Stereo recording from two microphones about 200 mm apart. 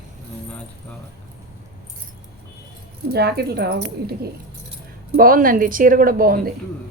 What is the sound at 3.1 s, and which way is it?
A woman's voice, 55° right (ahead or behind).